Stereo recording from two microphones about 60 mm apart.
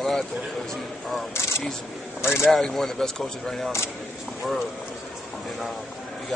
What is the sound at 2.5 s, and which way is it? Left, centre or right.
Speech, centre.